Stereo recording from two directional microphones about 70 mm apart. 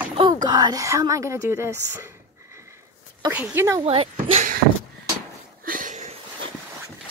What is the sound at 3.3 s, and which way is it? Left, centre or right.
Speech, right.